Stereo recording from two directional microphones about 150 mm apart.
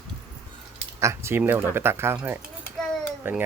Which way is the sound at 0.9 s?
20° right (ahead or behind).